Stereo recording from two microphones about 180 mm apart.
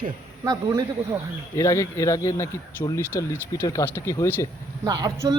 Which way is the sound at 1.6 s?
15° left (ahead or behind).